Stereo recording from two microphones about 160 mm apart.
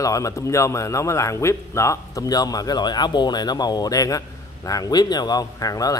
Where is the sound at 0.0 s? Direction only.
20° left (ahead or behind).